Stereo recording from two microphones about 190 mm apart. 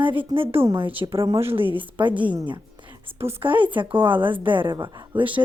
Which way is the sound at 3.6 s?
25° right (ahead or behind).